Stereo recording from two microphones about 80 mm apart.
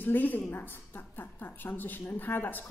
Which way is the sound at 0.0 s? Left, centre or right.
Left.